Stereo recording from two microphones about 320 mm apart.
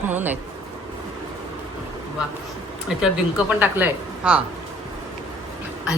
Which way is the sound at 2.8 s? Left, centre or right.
Centre.